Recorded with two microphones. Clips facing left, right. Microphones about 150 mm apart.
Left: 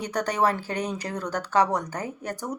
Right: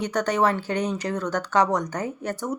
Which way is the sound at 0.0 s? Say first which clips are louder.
Right 2 dB; 35° left (ahead or behind).